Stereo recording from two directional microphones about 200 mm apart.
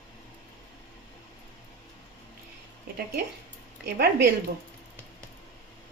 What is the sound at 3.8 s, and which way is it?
Speech, 55° right (ahead or behind).